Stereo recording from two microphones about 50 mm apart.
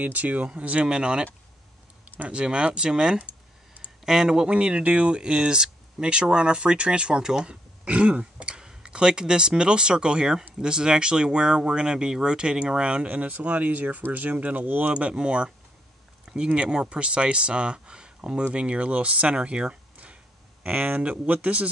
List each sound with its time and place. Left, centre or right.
0.0 s speech: right
2.0 s a sound: right
2.3 s speech: centre
4.5 s speech: right